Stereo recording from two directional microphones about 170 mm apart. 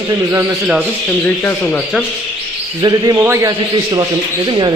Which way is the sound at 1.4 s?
10° left (ahead or behind).